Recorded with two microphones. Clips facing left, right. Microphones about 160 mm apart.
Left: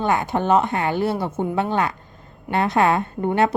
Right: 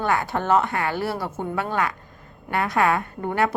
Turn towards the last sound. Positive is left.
turn(degrees=25)  # may be behind; listen again after turning